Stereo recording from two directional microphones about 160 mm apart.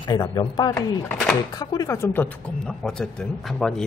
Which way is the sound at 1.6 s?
25° left (ahead or behind).